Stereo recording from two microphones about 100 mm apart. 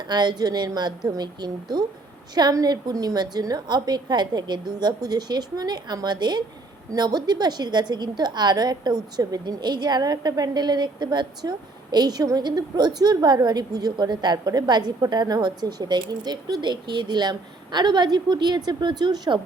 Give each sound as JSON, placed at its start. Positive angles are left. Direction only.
{"t": 0.1, "sound": "a woman's voice", "side_deg": -45}